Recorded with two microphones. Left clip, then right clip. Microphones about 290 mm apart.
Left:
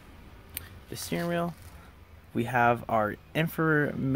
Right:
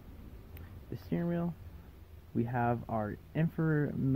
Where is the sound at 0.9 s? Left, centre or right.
Centre.